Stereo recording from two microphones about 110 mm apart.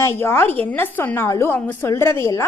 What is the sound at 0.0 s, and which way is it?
A woman's voice, 20° left (ahead or behind).